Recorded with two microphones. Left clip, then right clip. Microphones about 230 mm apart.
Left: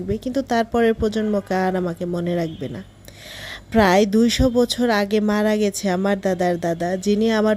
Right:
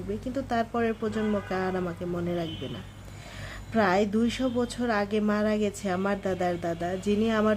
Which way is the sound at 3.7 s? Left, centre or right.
Left.